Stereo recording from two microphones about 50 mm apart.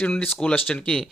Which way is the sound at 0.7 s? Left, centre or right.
Centre.